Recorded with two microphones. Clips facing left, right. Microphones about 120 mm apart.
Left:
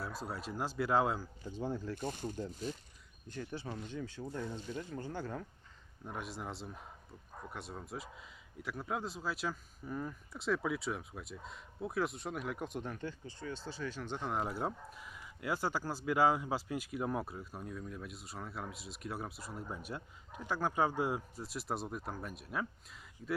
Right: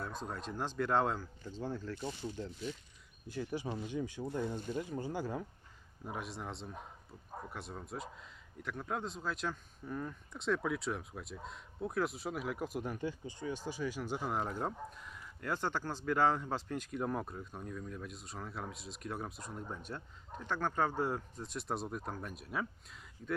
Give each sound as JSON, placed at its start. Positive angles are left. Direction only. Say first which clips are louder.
{"t": 0.0, "sound": "speech", "louder": "even", "side_deg": 5}
{"t": 2.0, "sound": "speech", "louder": "left 1 dB", "side_deg": 50}
{"t": 3.2, "sound": "speech", "louder": "right 4 dB", "side_deg": -10}
{"t": 6.1, "sound": "speech", "louder": "even", "side_deg": 0}